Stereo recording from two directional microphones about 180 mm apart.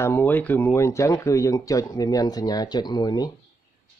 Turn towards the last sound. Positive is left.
turn(degrees=20)  # may be behind; listen again after turning